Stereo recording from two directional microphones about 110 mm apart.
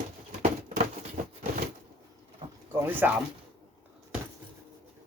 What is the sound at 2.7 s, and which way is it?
Speech, 20° right (ahead or behind).